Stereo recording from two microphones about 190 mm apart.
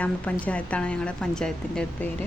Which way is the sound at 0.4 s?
5° left (ahead or behind).